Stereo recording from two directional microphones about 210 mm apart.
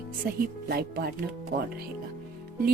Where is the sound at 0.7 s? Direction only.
50° right (ahead or behind).